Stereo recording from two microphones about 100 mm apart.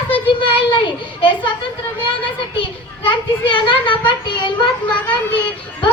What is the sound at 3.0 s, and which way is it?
A child's voice, 55° left (ahead or behind).